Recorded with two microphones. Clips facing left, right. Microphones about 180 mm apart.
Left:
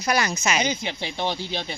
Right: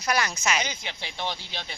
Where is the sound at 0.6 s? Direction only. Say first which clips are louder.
Left 7 dB; 20° left (ahead or behind).